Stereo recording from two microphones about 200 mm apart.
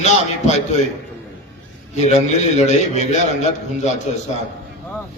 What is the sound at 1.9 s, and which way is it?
A man's voice, 35° left (ahead or behind).